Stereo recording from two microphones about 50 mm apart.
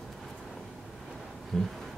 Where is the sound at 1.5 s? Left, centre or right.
Centre.